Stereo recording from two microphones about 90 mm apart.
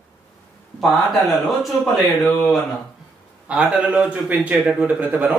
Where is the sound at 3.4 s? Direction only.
15° right (ahead or behind).